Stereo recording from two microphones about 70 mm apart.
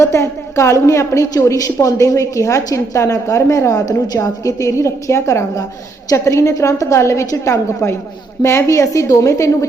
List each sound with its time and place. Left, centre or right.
0.0 s a woman's voice: left